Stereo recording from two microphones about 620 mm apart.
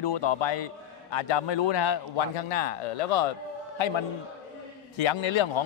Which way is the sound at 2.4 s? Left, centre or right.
Left.